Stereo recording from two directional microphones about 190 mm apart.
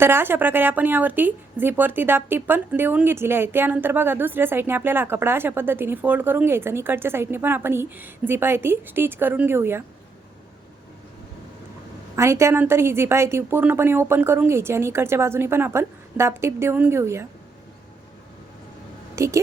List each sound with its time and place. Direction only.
0.0 s speech: 10° right (ahead or behind)
12.1 s speech: 15° right (ahead or behind)
19.1 s speech: 15° right (ahead or behind)